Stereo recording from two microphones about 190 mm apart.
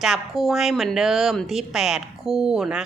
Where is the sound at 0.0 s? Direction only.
Centre (ahead or behind).